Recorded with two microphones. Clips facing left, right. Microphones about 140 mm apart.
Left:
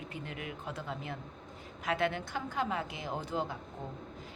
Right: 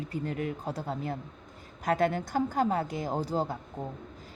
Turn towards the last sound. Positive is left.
turn(degrees=-40)  # may be behind; listen again after turning